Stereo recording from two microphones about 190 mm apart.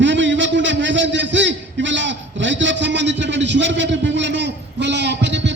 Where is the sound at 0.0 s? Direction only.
75° right (ahead or behind).